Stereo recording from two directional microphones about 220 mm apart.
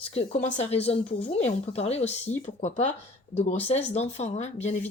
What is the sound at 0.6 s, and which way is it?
Speech, 30° left (ahead or behind).